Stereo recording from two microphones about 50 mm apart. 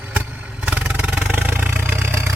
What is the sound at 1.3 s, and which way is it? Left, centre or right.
Vehicle, right.